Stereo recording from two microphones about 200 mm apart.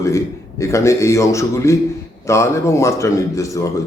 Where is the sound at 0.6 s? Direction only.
15° left (ahead or behind).